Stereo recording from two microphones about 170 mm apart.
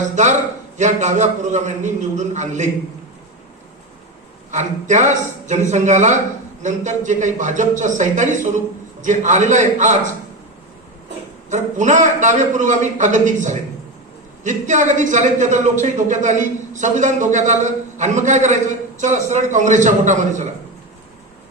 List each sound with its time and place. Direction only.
0.8 s speech: 45° right (ahead or behind)
4.5 s speech: 45° right (ahead or behind)
11.4 s speech: 45° right (ahead or behind)